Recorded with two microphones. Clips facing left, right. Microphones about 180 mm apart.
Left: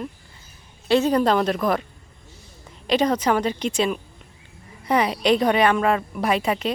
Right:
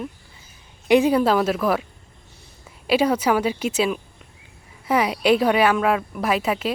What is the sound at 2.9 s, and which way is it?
Speech, 10° right (ahead or behind).